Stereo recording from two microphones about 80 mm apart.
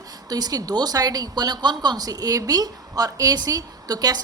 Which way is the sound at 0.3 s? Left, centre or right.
Right.